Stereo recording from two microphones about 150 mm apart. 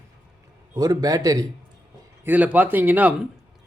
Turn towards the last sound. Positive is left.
turn(degrees=-10)  # may be behind; listen again after turning